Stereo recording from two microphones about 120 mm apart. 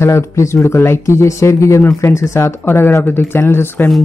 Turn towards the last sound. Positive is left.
turn(degrees=20)  # may be behind; listen again after turning